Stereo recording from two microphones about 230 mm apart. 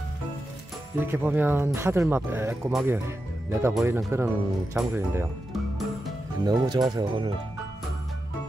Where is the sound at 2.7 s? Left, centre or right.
Centre.